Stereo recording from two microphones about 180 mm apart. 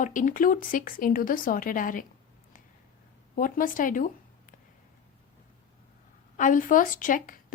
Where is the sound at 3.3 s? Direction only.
50° left (ahead or behind).